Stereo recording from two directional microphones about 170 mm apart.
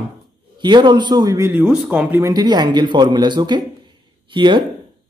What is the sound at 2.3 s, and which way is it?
Speech, 25° right (ahead or behind).